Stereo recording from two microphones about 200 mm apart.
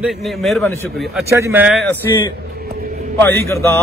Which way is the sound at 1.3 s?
10° right (ahead or behind).